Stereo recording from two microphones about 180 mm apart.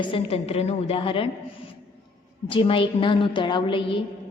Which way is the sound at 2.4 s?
30° left (ahead or behind).